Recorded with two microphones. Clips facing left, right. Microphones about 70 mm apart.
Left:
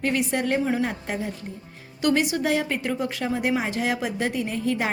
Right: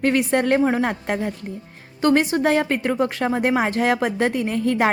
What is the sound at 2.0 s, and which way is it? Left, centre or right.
Speech, right.